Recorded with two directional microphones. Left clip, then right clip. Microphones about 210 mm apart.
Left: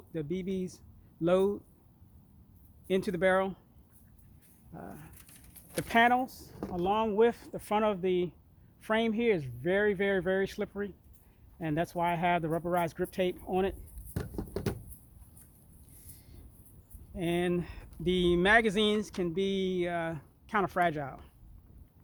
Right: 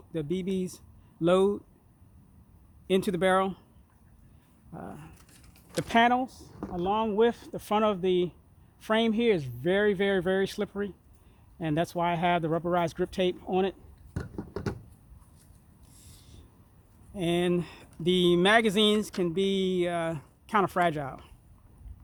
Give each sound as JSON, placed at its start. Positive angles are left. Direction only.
{"t": 0.1, "sound": "speech", "side_deg": -50}
{"t": 2.8, "sound": "speech", "side_deg": -50}
{"t": 4.7, "sound": "speech", "side_deg": -50}
{"t": 14.1, "sound": "a sound", "side_deg": -5}
{"t": 17.2, "sound": "speech", "side_deg": -45}